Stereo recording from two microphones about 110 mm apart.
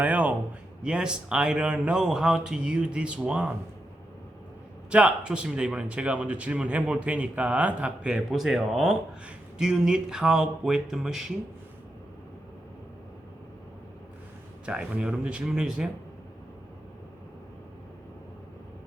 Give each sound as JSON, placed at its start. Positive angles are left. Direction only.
{"t": 0.0, "sound": "a sound", "side_deg": -15}
{"t": 0.8, "sound": "speech", "side_deg": -10}
{"t": 4.9, "sound": "speech", "side_deg": -10}
{"t": 14.7, "sound": "speech", "side_deg": -10}